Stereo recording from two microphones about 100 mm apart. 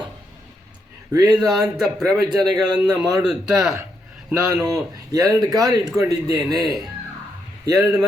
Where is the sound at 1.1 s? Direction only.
40° right (ahead or behind).